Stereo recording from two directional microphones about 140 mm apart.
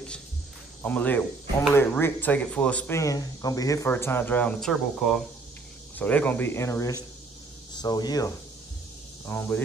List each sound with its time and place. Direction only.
0.8 s speech: 10° left (ahead or behind)
3.0 s speech: 25° left (ahead or behind); by 5.2 s centre (ahead or behind)
5.9 s speech: 10° left (ahead or behind); by 8.3 s 25° left (ahead or behind)
9.2 s speech: 15° left (ahead or behind)